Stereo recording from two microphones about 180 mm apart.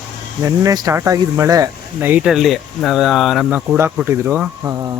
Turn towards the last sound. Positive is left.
turn(degrees=-15)  # may be behind; listen again after turning